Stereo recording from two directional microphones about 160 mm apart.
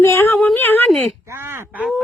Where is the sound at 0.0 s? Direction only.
15° left (ahead or behind).